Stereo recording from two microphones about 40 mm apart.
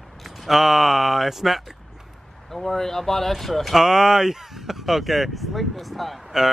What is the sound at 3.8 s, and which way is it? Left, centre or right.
Speech, centre.